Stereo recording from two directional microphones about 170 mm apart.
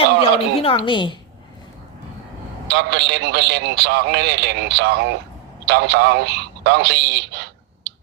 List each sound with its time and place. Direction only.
0.0 s a woman's voice: 35° left (ahead or behind)
2.6 s a man's voice: 80° right